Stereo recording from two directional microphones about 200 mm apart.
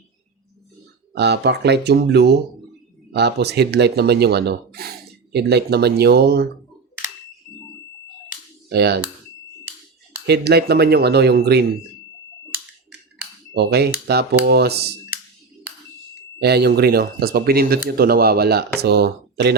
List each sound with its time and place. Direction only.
1.1 s speech: 55° right (ahead or behind)
7.5 s fire alarm: 15° left (ahead or behind)
8.7 s speech: 55° right (ahead or behind)
10.2 s speech: 55° right (ahead or behind)
13.5 s dishes: 55° right (ahead or behind)
14.1 s speech: 55° right (ahead or behind)
16.4 s speech: 55° right (ahead or behind)